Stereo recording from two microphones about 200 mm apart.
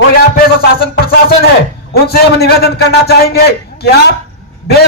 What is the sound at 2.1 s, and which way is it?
A man's voice, 50° left (ahead or behind).